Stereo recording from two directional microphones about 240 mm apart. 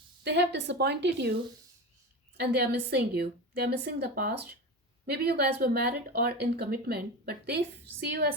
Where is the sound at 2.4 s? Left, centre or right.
Right.